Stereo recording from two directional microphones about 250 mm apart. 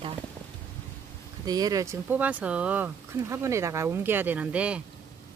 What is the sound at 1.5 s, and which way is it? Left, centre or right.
Speech, centre.